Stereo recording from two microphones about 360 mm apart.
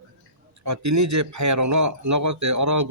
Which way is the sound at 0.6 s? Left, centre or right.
Right.